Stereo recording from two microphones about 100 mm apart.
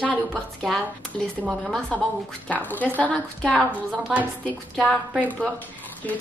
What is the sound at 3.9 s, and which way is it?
Speech, 10° right (ahead or behind).